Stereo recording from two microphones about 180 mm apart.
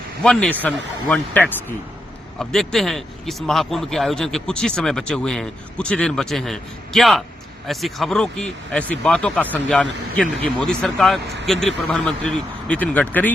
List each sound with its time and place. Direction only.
0.2 s speech: 5° left (ahead or behind)